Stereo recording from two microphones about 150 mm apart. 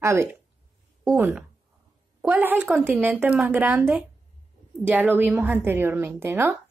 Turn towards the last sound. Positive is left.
turn(degrees=-15)  # may be behind; listen again after turning